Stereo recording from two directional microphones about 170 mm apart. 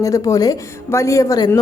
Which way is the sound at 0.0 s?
20° left (ahead or behind).